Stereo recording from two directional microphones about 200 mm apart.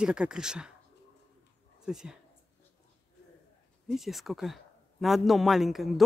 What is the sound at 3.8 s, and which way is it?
A man's voice, centre (ahead or behind).